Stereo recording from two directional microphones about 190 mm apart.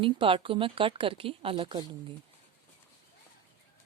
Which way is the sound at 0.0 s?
25° right (ahead or behind).